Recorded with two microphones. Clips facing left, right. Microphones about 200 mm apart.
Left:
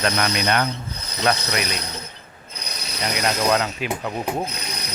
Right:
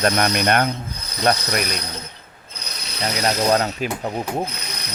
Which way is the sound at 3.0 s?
30° right (ahead or behind).